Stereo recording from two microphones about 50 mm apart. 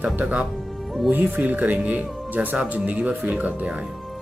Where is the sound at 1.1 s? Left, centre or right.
Right.